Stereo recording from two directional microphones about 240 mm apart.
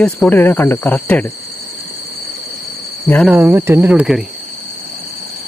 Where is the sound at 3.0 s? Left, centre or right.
Centre.